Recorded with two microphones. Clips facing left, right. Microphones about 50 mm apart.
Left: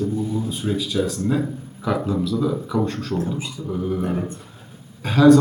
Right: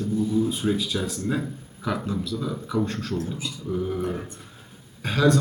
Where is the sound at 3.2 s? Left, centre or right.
Centre.